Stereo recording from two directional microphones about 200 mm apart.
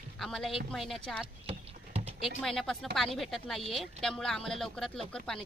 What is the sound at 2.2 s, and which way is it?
Speech, centre (ahead or behind).